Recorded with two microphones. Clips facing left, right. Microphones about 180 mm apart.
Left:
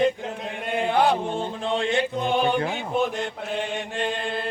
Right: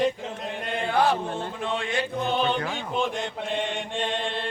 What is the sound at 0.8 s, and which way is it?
Music, 20° left (ahead or behind).